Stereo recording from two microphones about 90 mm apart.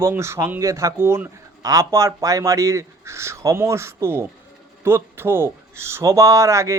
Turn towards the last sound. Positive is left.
turn(degrees=-35)  # may be behind; listen again after turning